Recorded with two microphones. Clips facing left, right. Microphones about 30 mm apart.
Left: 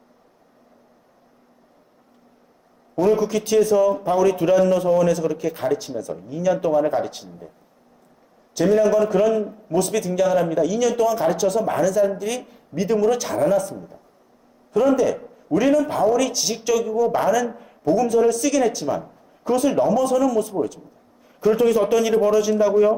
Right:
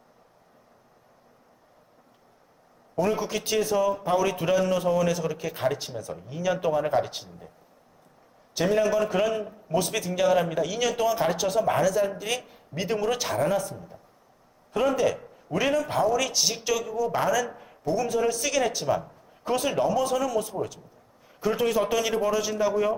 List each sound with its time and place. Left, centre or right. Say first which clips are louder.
3.2 s a man's voice: left 8 dB; centre
8.6 s a man's voice: left 6 dB; centre
12.7 s a man's voice: left 7 dB; centre
14.7 s a man's voice: left 6 dB; centre